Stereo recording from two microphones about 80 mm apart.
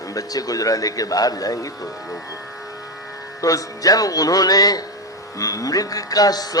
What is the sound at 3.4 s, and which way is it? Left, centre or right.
A man's voice, left.